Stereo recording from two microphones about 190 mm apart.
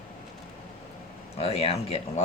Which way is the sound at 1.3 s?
30° left (ahead or behind).